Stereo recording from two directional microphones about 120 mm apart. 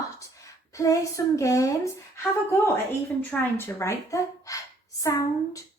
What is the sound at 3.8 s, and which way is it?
Speech, 25° left (ahead or behind).